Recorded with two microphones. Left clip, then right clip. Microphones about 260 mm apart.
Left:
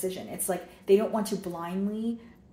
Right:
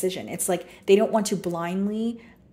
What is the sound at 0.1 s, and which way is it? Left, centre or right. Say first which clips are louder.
A woman's voice: right 5 dB; right.